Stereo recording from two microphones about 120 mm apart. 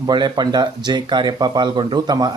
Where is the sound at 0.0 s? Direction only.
35° right (ahead or behind).